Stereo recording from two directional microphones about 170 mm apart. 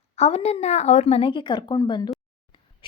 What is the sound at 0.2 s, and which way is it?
A woman's voice, 40° left (ahead or behind).